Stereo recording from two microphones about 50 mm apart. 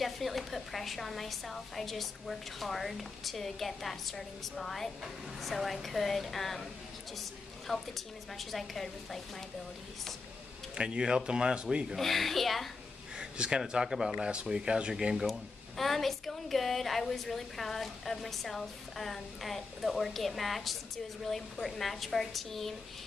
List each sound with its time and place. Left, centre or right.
0.0 s a woman's voice: centre
10.7 s speech: centre
12.0 s a woman's voice: centre
13.2 s speech: centre
15.8 s a woman's voice: centre